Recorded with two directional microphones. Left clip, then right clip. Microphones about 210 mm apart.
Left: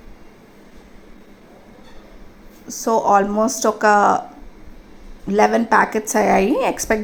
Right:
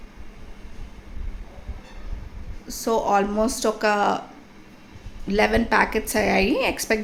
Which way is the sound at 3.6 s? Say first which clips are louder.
Left 8 dB; 15° left (ahead or behind).